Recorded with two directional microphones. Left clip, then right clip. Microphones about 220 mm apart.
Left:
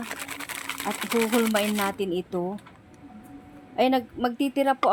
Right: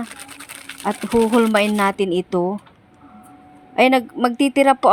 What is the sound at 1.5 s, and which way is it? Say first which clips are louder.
A woman's voice: right 8 dB; 30° right (ahead or behind).